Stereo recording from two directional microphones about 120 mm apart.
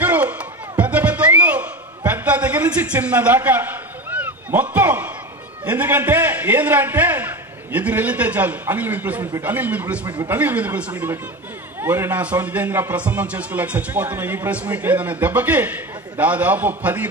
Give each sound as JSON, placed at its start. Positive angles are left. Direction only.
{"t": 0.0, "sound": "music", "side_deg": -15}
{"t": 5.7, "sound": "a man's voice", "side_deg": -15}